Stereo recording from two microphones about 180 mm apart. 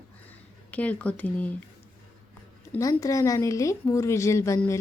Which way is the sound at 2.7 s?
20° left (ahead or behind).